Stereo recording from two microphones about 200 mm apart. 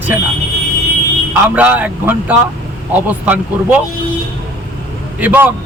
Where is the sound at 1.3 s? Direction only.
10° right (ahead or behind).